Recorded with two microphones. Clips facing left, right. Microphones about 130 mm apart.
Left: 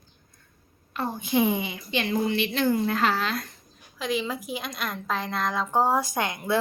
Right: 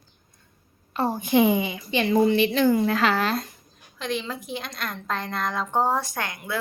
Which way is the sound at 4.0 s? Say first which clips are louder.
Left 1 dB; 5° left (ahead or behind).